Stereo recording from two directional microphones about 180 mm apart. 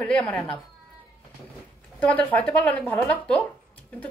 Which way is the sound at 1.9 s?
5° left (ahead or behind).